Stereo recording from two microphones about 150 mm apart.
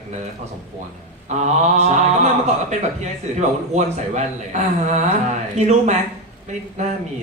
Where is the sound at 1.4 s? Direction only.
50° right (ahead or behind).